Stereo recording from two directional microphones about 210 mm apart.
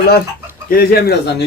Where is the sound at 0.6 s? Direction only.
45° left (ahead or behind).